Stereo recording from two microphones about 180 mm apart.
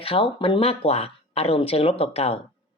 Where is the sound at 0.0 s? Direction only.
30° left (ahead or behind).